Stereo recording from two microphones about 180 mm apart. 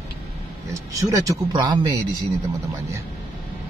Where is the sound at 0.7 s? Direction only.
20° right (ahead or behind).